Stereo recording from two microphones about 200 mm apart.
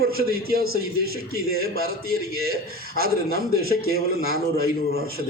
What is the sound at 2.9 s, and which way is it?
Speech, 50° right (ahead or behind).